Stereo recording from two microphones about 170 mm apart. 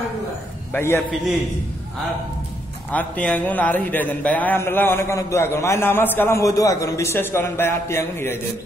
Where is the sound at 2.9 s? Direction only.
10° left (ahead or behind).